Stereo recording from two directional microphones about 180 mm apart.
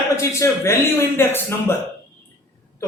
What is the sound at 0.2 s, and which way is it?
A man's voice, 15° left (ahead or behind).